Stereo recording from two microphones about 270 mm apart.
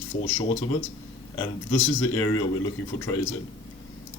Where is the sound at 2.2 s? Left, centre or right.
Centre.